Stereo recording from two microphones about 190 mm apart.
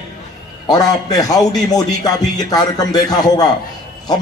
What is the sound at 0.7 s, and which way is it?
A man's voice, 20° left (ahead or behind).